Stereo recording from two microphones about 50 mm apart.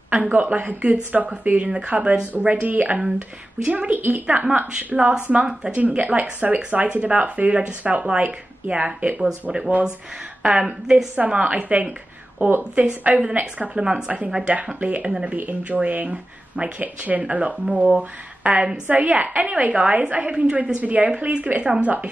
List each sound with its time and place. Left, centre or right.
0.1 s speech: right
4.9 s speech: centre
9.2 s a woman's voice: centre
11.1 s speech: right
12.7 s speech: right
13.8 s a woman's voice: centre
14.8 s a woman's voice: right